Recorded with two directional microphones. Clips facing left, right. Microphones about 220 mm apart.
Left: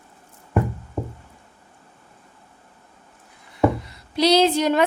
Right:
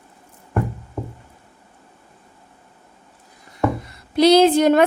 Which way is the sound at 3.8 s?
55° right (ahead or behind).